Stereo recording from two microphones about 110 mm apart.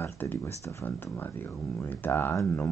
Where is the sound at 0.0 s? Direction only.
15° left (ahead or behind).